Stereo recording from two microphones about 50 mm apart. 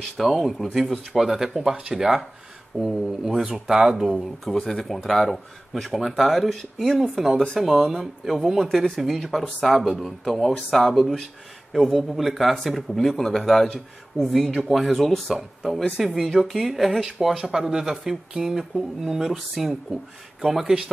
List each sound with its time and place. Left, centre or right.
0.0 s speech: centre
4.2 s speech: centre